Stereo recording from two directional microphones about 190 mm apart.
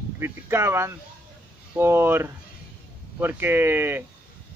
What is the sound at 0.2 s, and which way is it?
Speech, 15° right (ahead or behind).